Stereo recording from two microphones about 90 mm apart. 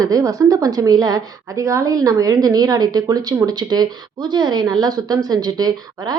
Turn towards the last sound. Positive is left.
turn(degrees=-45)  # may be behind; listen again after turning